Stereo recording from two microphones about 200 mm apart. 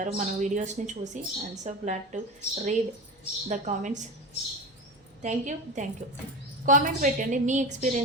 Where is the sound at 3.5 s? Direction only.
35° right (ahead or behind).